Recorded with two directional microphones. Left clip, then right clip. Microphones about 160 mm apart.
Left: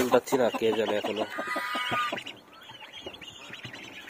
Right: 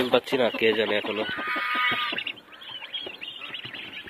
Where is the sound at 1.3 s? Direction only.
50° left (ahead or behind).